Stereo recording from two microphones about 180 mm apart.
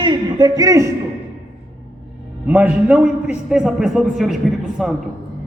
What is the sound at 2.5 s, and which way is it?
A man's voice, 10° right (ahead or behind).